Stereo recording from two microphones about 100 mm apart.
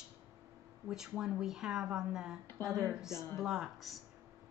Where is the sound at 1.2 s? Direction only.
5° right (ahead or behind).